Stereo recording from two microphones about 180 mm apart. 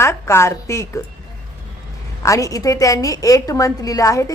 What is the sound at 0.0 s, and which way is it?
A woman's voice, 15° left (ahead or behind).